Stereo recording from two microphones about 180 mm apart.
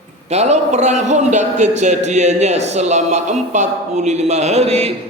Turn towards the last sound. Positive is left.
turn(degrees=-35)  # may be behind; listen again after turning